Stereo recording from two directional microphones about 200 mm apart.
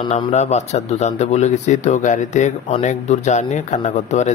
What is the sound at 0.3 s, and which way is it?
Speech, 35° left (ahead or behind).